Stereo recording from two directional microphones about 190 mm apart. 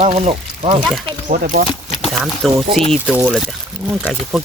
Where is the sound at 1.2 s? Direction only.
45° right (ahead or behind).